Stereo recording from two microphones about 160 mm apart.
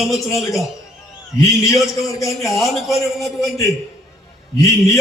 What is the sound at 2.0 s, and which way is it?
Speech, 20° left (ahead or behind).